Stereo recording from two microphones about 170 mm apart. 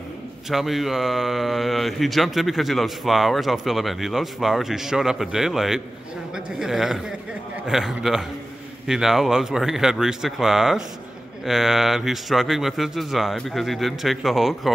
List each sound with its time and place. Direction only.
0.5 s speech: centre (ahead or behind)